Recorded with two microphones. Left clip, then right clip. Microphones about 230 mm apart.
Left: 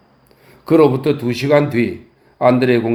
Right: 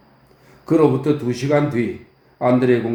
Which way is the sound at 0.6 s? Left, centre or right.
Left.